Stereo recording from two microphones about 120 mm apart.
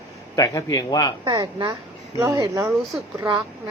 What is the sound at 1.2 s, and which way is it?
A woman's voice, 35° right (ahead or behind).